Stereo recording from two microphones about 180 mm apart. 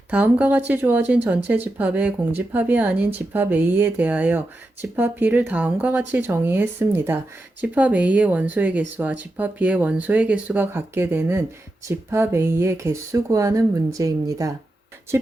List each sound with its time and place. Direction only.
0.1 s speech: 10° right (ahead or behind)